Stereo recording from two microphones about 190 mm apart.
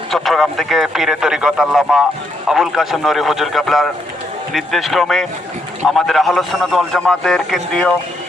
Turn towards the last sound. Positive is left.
turn(degrees=0)  # may be behind; listen again after turning